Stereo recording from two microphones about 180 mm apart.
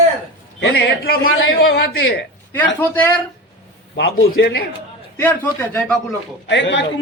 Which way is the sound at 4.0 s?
65° left (ahead or behind).